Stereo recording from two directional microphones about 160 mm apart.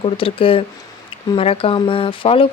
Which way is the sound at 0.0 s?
35° left (ahead or behind).